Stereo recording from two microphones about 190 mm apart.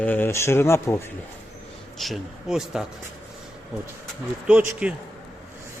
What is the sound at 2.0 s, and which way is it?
Speech, centre (ahead or behind).